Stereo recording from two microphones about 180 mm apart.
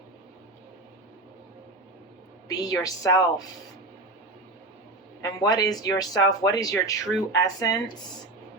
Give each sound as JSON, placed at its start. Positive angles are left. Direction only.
{"t": 2.5, "sound": "speech", "side_deg": 20}
{"t": 5.2, "sound": "speech", "side_deg": 20}